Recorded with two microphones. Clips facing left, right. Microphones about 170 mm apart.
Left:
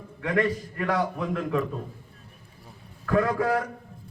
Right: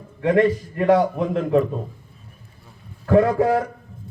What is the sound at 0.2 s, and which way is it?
A man's voice, 25° right (ahead or behind).